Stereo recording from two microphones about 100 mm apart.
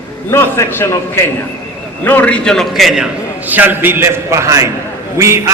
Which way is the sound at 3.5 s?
20° right (ahead or behind).